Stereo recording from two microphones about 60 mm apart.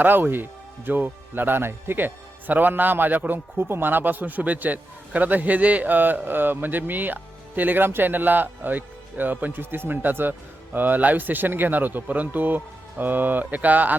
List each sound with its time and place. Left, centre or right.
0.0 s speech: right